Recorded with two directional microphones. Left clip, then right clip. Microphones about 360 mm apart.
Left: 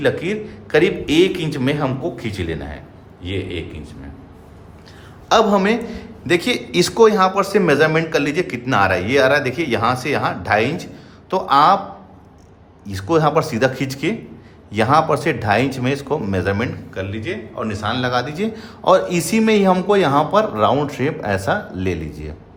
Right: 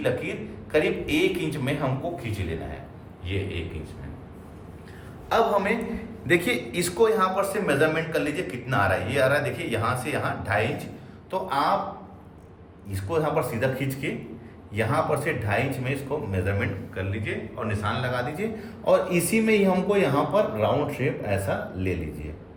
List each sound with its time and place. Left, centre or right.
0.0 s speech: left
5.3 s speech: centre
6.2 s speech: centre
12.9 s speech: centre